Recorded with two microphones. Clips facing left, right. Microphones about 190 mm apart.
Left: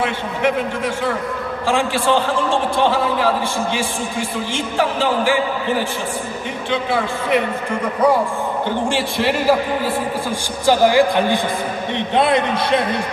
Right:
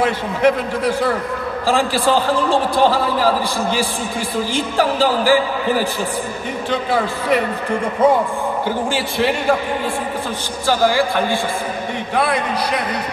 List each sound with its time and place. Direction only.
0.0 s a man's voice: 40° right (ahead or behind)
4.6 s a man's voice: 35° right (ahead or behind)
8.0 s a man's voice: 25° right (ahead or behind)
8.6 s a man's voice: centre (ahead or behind)
10.7 s a man's voice: 15° left (ahead or behind)